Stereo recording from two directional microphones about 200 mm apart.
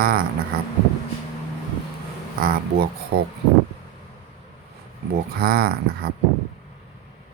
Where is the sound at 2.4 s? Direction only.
50° right (ahead or behind).